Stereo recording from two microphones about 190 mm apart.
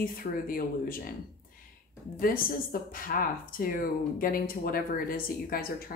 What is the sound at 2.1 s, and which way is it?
Speech, 50° left (ahead or behind).